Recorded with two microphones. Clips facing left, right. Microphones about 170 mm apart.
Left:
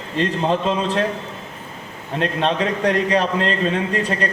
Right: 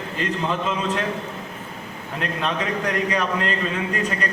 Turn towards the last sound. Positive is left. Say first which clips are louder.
# left 4 dB
turn(degrees=30)  # may be behind; listen again after turning